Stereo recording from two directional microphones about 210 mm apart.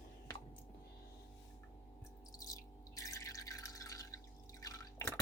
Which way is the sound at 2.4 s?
15° left (ahead or behind).